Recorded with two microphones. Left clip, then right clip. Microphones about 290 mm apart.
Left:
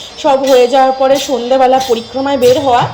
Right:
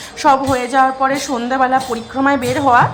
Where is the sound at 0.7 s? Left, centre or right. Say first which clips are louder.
Left 5 dB; centre.